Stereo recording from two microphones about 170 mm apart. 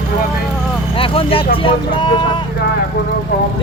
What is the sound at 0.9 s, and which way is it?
Speech, 30° left (ahead or behind).